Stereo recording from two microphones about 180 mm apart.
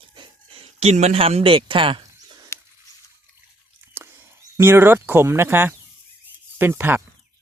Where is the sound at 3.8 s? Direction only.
15° right (ahead or behind).